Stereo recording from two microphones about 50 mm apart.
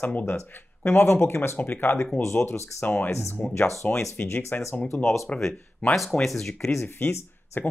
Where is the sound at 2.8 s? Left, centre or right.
Left.